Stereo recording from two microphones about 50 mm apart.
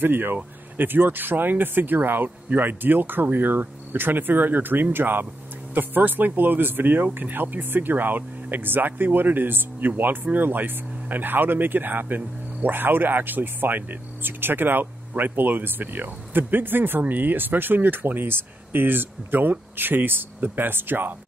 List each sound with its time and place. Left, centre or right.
0.0 s speech: right